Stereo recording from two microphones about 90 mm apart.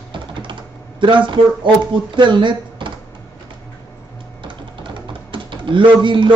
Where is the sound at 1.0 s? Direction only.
65° right (ahead or behind).